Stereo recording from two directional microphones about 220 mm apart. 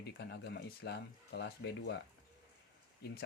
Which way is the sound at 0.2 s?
50° left (ahead or behind).